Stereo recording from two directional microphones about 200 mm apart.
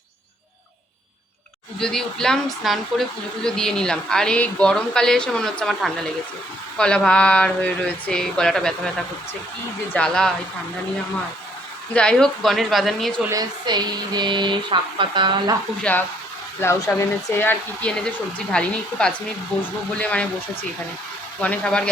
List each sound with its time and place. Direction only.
1.8 s speech: 5° left (ahead or behind)
9.9 s speech: 5° left (ahead or behind)
11.9 s speech: 5° left (ahead or behind)
13.3 s speech: 20° right (ahead or behind)
15.8 s speech: 10° left (ahead or behind)
21.4 s speech: 5° left (ahead or behind)